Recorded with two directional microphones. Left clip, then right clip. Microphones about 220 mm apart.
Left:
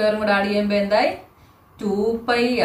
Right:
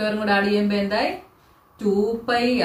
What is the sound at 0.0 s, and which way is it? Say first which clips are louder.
Speech: left 3 dB; 25° left (ahead or behind).